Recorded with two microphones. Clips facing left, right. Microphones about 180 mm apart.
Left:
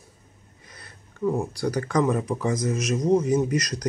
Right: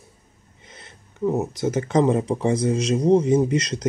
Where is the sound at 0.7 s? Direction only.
25° right (ahead or behind).